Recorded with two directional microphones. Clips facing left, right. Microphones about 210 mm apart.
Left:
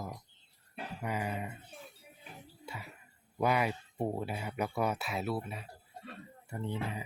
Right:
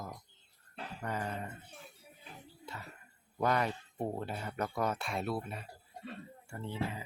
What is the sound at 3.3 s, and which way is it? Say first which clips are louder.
Speech: left 1 dB; 10° left (ahead or behind).